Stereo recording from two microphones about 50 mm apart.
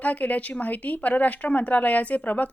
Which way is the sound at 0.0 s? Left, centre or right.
Left.